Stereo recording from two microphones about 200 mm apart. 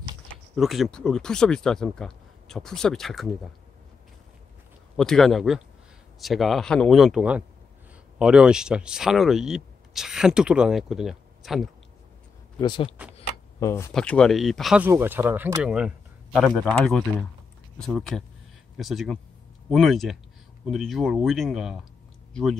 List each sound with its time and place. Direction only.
0.6 s speech: centre (ahead or behind)
4.9 s speech: centre (ahead or behind)
12.5 s speech: 25° left (ahead or behind)
13.9 s speech: 5° left (ahead or behind)